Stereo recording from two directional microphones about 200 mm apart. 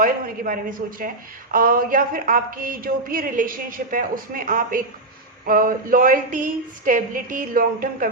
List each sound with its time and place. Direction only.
0.0 s a woman's voice: 45° right (ahead or behind)